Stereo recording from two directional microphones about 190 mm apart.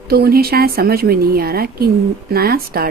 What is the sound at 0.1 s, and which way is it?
Speech, 55° right (ahead or behind).